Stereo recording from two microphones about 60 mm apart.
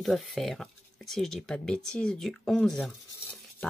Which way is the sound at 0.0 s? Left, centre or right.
Centre.